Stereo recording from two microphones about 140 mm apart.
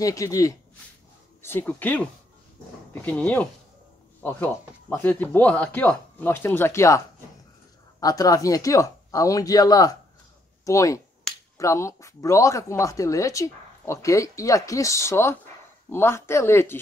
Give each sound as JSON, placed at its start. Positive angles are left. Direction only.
{"t": 0.0, "sound": "speech", "side_deg": 25}
{"t": 8.0, "sound": "speech", "side_deg": 25}